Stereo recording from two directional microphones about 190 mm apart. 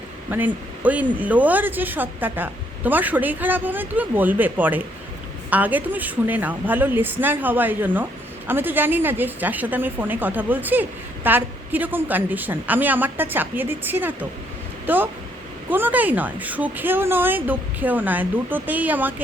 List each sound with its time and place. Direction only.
0.3 s a woman's voice: 10° right (ahead or behind)